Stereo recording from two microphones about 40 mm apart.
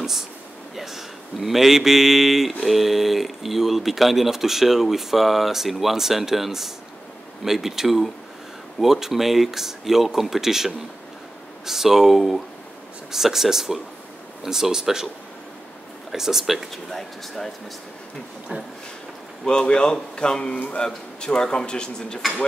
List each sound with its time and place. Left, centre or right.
0.7 s speech: centre
16.1 s speech: centre
18.5 s a sound: right
19.4 s speech: centre